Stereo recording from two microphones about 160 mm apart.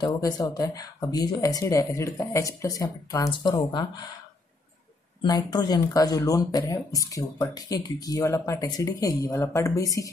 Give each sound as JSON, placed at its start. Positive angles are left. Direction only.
{"t": 0.0, "sound": "speech", "side_deg": 25}
{"t": 5.2, "sound": "speech", "side_deg": 25}